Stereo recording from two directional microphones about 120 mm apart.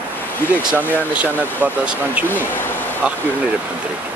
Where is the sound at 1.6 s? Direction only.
10° right (ahead or behind).